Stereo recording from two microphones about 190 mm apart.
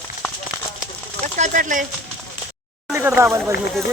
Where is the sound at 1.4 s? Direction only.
45° right (ahead or behind).